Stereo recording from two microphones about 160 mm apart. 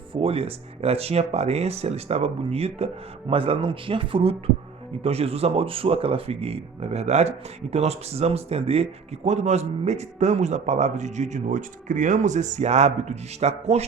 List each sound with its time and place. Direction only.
0.1 s speech: 35° right (ahead or behind)